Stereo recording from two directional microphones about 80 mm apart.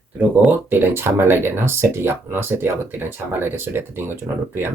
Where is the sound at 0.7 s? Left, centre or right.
Right.